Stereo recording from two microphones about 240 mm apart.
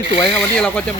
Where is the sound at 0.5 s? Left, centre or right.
Centre.